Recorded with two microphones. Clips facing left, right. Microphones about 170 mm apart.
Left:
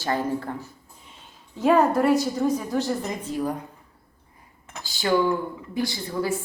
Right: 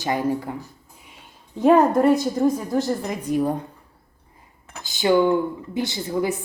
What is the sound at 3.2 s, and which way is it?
Speech, 20° right (ahead or behind).